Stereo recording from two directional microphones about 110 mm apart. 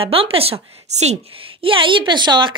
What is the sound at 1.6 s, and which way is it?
Speech, 50° right (ahead or behind).